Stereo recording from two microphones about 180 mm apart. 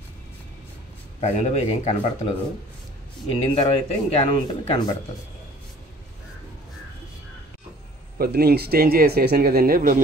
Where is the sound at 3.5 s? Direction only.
30° left (ahead or behind).